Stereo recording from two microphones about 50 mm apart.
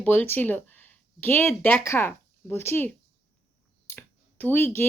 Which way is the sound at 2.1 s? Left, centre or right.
Left.